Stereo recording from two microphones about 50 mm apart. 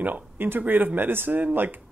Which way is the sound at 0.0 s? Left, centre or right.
Right.